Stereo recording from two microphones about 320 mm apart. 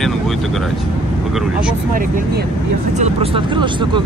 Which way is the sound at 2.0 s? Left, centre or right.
Right.